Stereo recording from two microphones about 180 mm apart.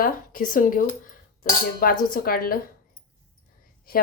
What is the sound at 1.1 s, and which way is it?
Cutlery, 50° left (ahead or behind).